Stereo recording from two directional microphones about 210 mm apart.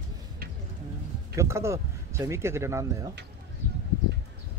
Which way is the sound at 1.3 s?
15° right (ahead or behind).